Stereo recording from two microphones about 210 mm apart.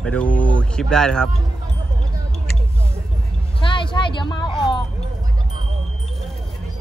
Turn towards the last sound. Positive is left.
turn(degrees=20)  # may be behind; listen again after turning